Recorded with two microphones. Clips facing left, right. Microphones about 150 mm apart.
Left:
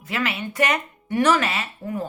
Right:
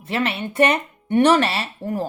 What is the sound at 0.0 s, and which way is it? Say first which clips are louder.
Speech: right 3 dB; 30° right (ahead or behind).